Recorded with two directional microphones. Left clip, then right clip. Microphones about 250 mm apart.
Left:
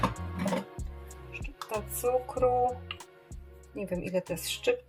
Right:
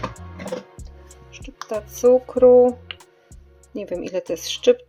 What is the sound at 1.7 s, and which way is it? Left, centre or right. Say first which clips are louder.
Speech: right 8 dB; right.